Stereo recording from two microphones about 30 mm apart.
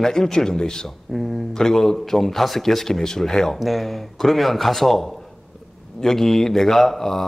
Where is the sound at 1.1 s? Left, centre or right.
Centre.